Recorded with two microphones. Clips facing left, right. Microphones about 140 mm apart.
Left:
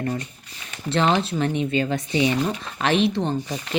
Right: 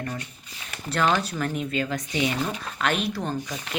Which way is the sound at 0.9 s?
25° left (ahead or behind).